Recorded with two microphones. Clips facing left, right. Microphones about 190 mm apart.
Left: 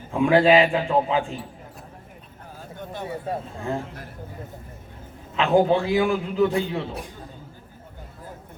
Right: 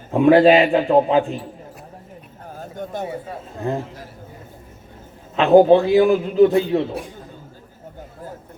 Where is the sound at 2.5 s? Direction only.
45° right (ahead or behind).